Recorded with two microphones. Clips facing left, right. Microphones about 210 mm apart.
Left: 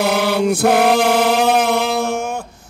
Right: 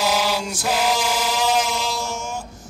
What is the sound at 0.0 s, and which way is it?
Chant, 60° left (ahead or behind).